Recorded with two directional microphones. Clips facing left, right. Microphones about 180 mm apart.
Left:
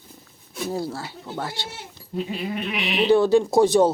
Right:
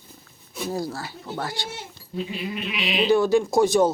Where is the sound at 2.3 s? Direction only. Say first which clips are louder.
Left 3 dB; 50° left (ahead or behind).